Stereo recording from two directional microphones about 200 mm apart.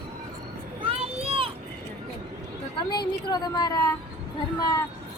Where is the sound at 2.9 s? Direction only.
20° left (ahead or behind).